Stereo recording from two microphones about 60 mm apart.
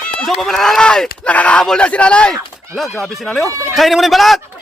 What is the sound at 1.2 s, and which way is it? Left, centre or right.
Speech, left.